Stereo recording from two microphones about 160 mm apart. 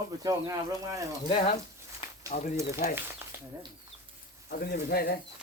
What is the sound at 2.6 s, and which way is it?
Speech, 80° left.